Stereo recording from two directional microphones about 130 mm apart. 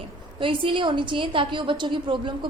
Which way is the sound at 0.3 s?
40° right (ahead or behind).